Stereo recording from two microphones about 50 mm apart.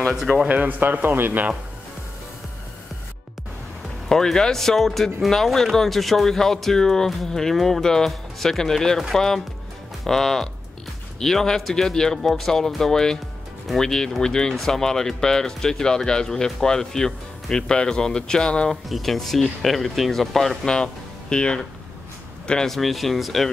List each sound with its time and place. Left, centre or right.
0.1 s speech: centre
0.5 s a man's voice: right
4.1 s speech: centre
18.7 s speech: centre
20.7 s speech: centre
22.7 s speech: centre